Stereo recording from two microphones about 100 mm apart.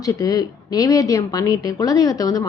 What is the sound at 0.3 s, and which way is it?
A woman's voice, 40° left (ahead or behind).